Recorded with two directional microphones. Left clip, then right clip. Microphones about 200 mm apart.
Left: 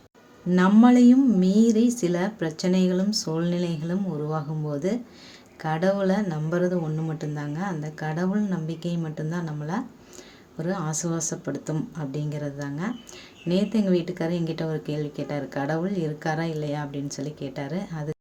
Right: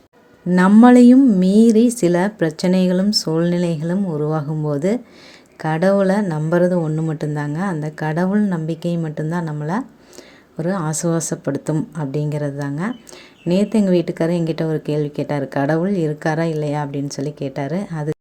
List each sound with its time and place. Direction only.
0.5 s a woman's voice: 30° right (ahead or behind)